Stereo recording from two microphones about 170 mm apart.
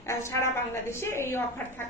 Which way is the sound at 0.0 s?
15° left (ahead or behind).